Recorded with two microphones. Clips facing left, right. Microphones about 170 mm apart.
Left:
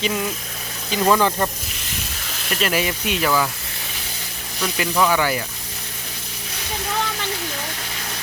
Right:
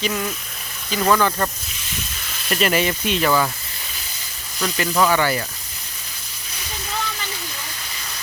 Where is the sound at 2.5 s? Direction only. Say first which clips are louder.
Right 2 dB; centre (ahead or behind).